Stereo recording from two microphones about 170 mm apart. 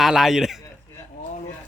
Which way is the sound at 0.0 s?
Centre (ahead or behind).